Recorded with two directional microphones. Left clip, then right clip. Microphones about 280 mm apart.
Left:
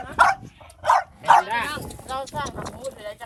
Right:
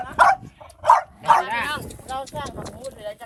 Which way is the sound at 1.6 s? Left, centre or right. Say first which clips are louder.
Right 2 dB; centre.